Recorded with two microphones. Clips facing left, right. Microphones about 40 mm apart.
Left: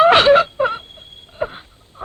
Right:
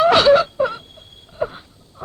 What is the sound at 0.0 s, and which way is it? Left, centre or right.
Wail, left.